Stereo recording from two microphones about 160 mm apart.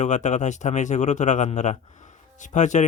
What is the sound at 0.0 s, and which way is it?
Speech, 50° left (ahead or behind).